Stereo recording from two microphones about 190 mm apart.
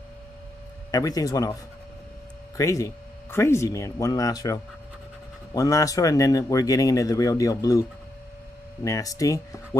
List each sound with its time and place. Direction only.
0.9 s speech: 20° left (ahead or behind)
8.8 s speech: 15° left (ahead or behind)